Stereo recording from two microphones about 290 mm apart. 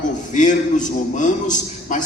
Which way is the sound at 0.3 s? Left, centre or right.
Left.